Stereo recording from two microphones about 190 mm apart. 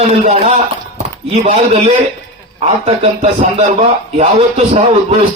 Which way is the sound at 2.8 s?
30° right (ahead or behind).